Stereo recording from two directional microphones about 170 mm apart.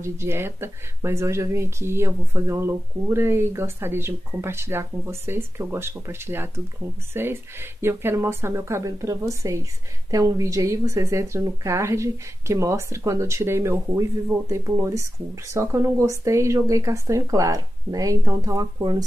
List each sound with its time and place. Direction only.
0.0 s speech: 15° right (ahead or behind)